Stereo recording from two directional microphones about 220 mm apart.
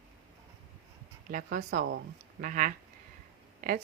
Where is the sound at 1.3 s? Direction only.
40° right (ahead or behind).